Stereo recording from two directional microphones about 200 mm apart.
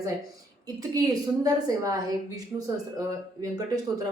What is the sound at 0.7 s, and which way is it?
A woman's voice, 20° right (ahead or behind).